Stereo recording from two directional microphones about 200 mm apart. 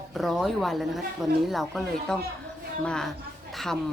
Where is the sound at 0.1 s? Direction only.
Centre (ahead or behind).